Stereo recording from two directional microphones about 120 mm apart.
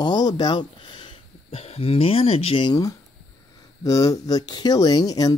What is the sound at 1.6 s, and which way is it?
Speech, 55° left (ahead or behind).